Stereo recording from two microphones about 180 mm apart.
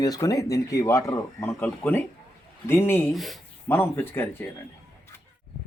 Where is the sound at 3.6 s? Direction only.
10° left (ahead or behind).